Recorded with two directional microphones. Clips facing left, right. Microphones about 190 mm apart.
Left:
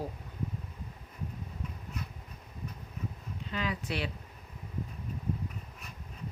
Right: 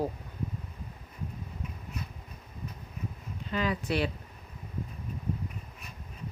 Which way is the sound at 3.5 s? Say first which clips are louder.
Right 5 dB; 45° right (ahead or behind).